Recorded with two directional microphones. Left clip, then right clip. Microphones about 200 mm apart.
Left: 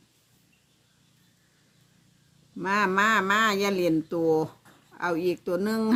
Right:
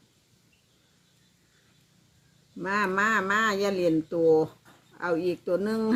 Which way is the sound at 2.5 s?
45° left (ahead or behind).